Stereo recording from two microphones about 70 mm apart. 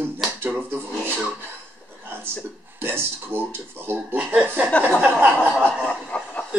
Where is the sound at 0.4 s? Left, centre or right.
Right.